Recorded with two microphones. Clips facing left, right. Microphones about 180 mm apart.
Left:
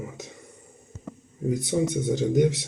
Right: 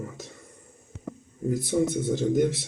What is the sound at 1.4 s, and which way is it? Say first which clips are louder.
Speech: even; centre (ahead or behind).